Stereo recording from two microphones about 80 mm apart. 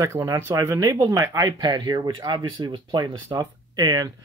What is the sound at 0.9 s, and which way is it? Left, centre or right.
Speech, right.